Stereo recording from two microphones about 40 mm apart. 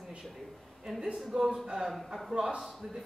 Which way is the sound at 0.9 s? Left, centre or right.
Centre.